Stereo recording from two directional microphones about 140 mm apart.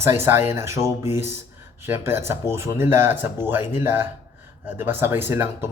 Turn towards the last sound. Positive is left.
turn(degrees=-15)  # may be behind; listen again after turning